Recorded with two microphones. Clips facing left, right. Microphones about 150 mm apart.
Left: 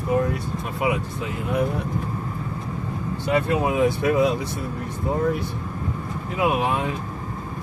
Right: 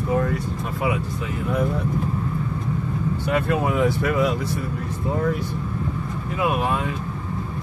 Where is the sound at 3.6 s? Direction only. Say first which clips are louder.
Left 1 dB; 15° left (ahead or behind).